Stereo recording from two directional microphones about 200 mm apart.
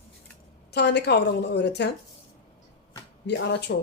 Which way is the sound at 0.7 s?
55° left (ahead or behind).